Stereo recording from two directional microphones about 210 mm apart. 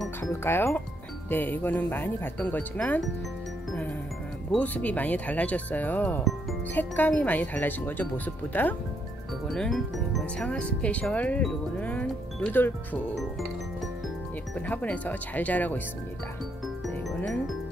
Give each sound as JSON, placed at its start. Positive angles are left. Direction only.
{"t": 0.2, "sound": "speech", "side_deg": 10}
{"t": 4.5, "sound": "speech", "side_deg": 5}
{"t": 14.5, "sound": "speech", "side_deg": 5}
{"t": 16.6, "sound": "music", "side_deg": 0}